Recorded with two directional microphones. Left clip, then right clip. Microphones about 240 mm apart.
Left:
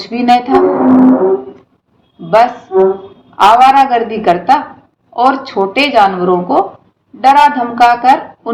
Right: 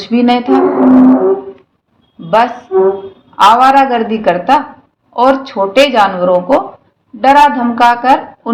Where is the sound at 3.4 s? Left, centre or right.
Right.